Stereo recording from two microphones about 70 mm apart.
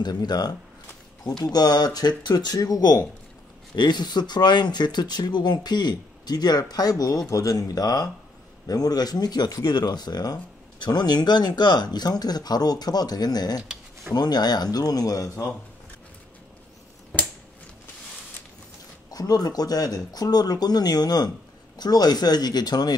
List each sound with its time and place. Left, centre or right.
0.0 s speech: left
3.7 s speech: left
7.2 s speech: left
19.0 s speech: left